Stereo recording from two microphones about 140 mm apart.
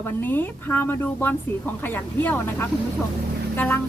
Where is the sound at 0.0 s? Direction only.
15° left (ahead or behind).